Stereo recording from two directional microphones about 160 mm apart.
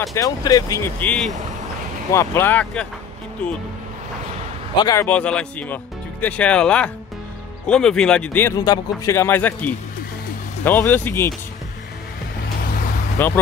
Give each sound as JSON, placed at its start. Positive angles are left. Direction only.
{"t": 0.1, "sound": "speech", "side_deg": 20}
{"t": 4.7, "sound": "speech", "side_deg": 20}
{"t": 5.0, "sound": "speech", "side_deg": 10}
{"t": 13.2, "sound": "speech", "side_deg": 15}